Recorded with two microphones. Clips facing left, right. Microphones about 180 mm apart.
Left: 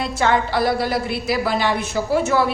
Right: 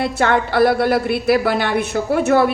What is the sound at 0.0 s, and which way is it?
A woman's voice, 60° right (ahead or behind).